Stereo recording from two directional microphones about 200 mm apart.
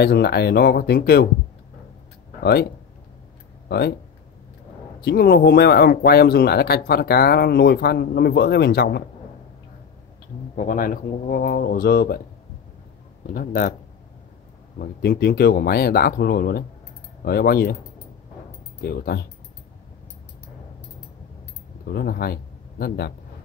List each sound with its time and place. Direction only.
0.0 s speech: 55° left (ahead or behind)
2.4 s speech: 55° left (ahead or behind)
5.0 s speech: 50° left (ahead or behind)
10.5 s speech: 40° left (ahead or behind)
13.3 s speech: 45° left (ahead or behind)
14.8 s speech: 55° left (ahead or behind)
18.8 s speech: 50° left (ahead or behind)
21.8 s speech: 50° left (ahead or behind)